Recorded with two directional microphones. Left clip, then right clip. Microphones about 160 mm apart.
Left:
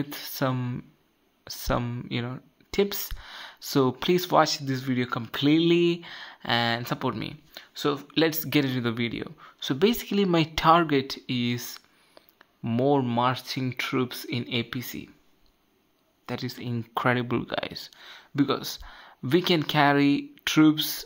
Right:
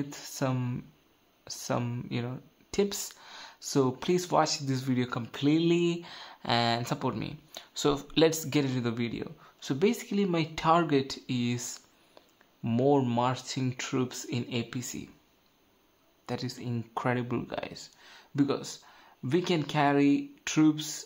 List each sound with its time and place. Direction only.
0.0 s speech: 20° left (ahead or behind)
4.6 s speech: 5° left (ahead or behind)
5.3 s speech: 20° left (ahead or behind)
7.5 s speech: 5° right (ahead or behind)
8.5 s speech: 15° left (ahead or behind)
10.8 s speech: 10° left (ahead or behind)
16.3 s speech: 15° left (ahead or behind)